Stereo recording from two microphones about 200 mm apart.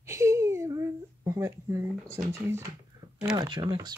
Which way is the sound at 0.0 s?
15° right (ahead or behind).